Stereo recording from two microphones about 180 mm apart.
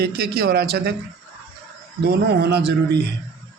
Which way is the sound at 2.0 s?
65° right (ahead or behind).